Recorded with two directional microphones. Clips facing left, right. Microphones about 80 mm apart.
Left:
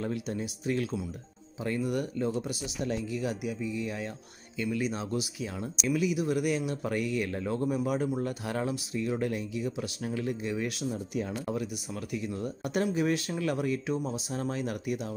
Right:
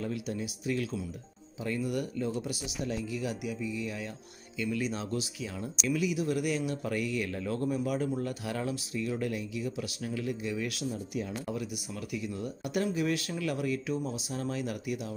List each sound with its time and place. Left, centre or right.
0.0 s speech: left
4.6 s speech: left
12.1 s speech: left